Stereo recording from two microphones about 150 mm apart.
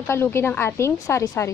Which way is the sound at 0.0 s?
15° left (ahead or behind).